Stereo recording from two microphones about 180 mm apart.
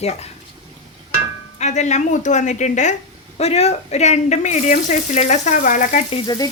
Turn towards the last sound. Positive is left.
turn(degrees=20)  # may be behind; listen again after turning